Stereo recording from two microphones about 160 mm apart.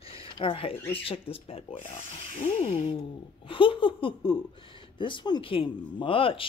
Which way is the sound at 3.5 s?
30° left (ahead or behind).